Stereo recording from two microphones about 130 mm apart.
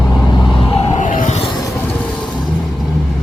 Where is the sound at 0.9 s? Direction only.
70° left (ahead or behind).